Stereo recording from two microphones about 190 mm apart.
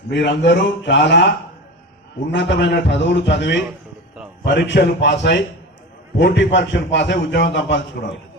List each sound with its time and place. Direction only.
0.1 s a man's voice: 65° left (ahead or behind)
2.3 s a man's voice: 70° left (ahead or behind)